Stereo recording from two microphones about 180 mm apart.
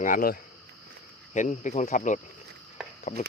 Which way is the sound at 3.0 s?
40° left (ahead or behind).